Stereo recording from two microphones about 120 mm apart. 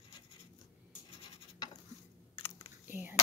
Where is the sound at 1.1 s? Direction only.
50° left (ahead or behind).